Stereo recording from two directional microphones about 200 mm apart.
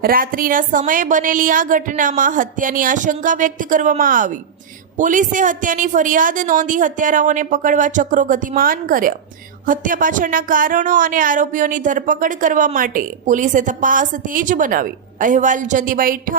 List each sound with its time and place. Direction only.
0.0 s speech: 45° right (ahead or behind)